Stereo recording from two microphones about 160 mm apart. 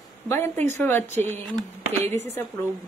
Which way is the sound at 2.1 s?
45° right (ahead or behind).